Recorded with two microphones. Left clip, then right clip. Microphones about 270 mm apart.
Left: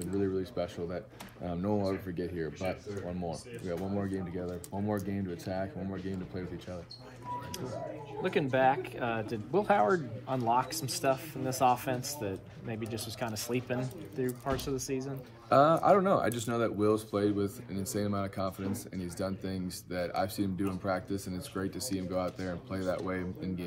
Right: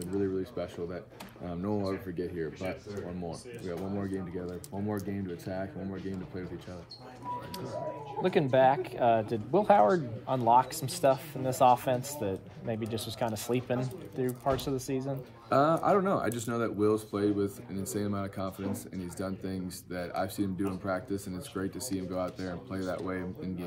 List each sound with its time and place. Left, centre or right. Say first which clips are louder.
0.0 s speech: right 1 dB; centre
8.2 s a man's voice: right 4 dB; right
15.5 s speech: left 2 dB; centre